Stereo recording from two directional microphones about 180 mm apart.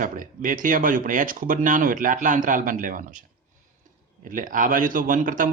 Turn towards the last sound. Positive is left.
turn(degrees=-50)  # may be behind; listen again after turning